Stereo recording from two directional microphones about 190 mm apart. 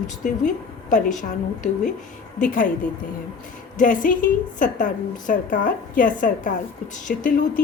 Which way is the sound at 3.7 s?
45° left (ahead or behind).